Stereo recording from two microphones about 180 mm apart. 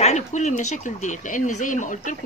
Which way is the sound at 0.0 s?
40° left (ahead or behind).